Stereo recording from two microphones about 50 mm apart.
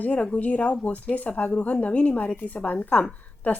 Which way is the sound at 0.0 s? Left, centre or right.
Left.